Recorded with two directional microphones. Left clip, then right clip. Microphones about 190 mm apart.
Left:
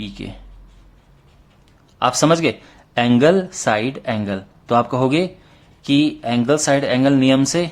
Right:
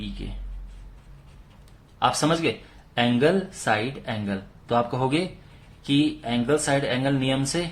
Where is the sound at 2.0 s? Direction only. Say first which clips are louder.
Left 7 dB; 45° left (ahead or behind).